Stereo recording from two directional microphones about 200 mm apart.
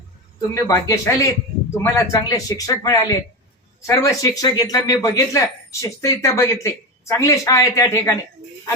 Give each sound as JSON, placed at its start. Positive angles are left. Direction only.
{"t": 0.5, "sound": "speech", "side_deg": 15}